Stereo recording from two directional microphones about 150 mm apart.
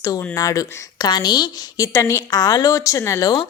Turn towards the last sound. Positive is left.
turn(degrees=20)  # may be behind; listen again after turning